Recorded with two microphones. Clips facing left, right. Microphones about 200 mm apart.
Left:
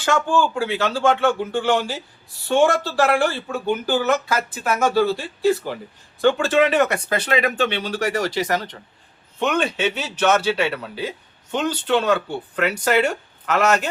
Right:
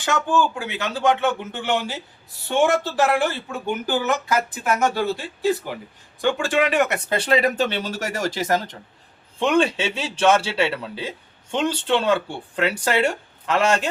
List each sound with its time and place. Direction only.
0.0 s speech: 15° right (ahead or behind); by 8.7 s 45° right (ahead or behind)
9.4 s speech: 30° right (ahead or behind)